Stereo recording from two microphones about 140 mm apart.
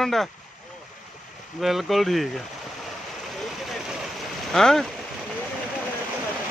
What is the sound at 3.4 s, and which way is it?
Vehicle, centre (ahead or behind).